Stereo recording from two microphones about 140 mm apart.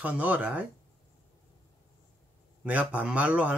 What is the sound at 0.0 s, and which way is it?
Speech, 10° right (ahead or behind).